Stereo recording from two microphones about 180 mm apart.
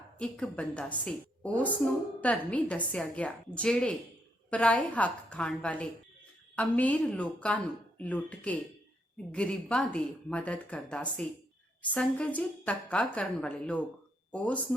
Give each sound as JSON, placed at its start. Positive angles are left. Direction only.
{"t": 0.2, "sound": "a woman's voice", "side_deg": 5}